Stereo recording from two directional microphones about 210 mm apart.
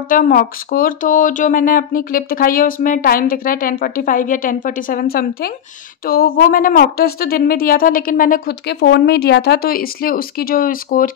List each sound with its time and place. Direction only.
0.1 s a woman's voice: 40° left (ahead or behind)